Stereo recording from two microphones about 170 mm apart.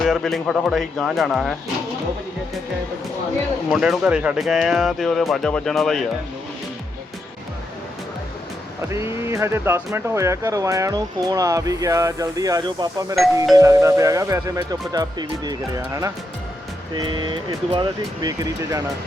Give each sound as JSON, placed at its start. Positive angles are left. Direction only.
{"t": 0.0, "sound": "speech", "side_deg": 0}
{"t": 3.7, "sound": "speech", "side_deg": -5}
{"t": 8.9, "sound": "speech", "side_deg": -15}